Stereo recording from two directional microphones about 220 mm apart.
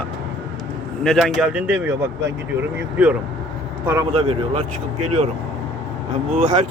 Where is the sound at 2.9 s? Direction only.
5° right (ahead or behind).